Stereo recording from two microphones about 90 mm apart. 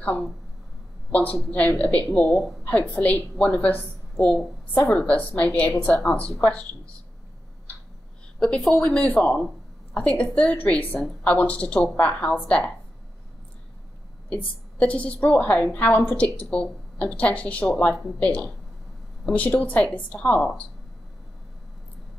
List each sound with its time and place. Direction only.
0.0 s a woman's voice: 15° left (ahead or behind)
8.4 s a woman's voice: 10° left (ahead or behind)
14.8 s a woman's voice: 15° left (ahead or behind)